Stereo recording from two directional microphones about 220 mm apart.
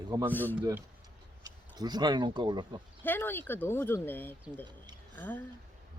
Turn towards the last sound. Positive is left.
turn(degrees=10)  # may be behind; listen again after turning